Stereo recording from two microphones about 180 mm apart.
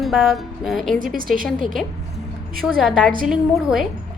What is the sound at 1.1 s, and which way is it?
Speech, 50° right (ahead or behind).